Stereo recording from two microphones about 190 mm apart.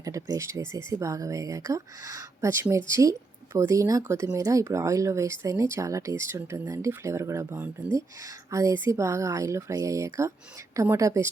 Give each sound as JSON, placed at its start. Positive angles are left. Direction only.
{"t": 0.0, "sound": "speech", "side_deg": -15}